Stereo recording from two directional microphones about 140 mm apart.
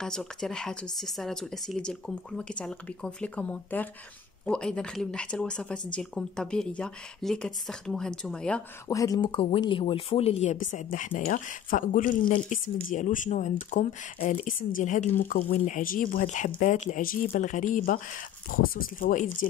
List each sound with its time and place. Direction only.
0.0 s speech: 5° left (ahead or behind)
8.8 s speech: 25° left (ahead or behind)
9.2 s speech: 40° left (ahead or behind); by 18.0 s 75° left (ahead or behind)
18.5 s speech: 90° left; by 19.3 s 70° left (ahead or behind)